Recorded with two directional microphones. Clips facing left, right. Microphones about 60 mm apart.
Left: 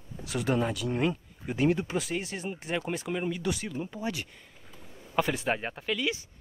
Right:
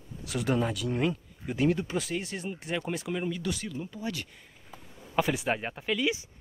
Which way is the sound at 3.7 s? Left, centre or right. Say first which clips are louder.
Left 2 dB; left.